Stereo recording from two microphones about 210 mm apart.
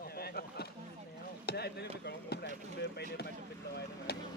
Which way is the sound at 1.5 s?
50° left (ahead or behind).